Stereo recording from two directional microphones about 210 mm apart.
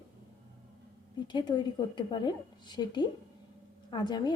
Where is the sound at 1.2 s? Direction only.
20° left (ahead or behind).